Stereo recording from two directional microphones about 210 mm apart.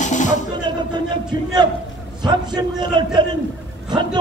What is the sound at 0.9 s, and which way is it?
A man's voice, 20° right (ahead or behind).